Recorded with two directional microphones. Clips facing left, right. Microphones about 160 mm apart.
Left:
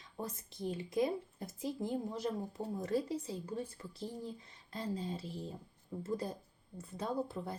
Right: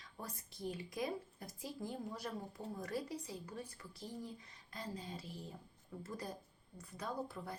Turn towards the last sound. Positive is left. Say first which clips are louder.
# left 5 dB
turn(degrees=25)  # may be behind; listen again after turning